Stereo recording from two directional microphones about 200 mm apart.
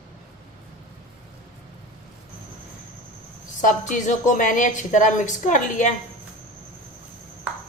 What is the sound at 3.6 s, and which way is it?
A woman's voice, 40° left (ahead or behind).